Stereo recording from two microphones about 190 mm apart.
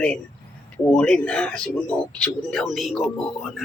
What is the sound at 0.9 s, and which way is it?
Speech, 5° left (ahead or behind).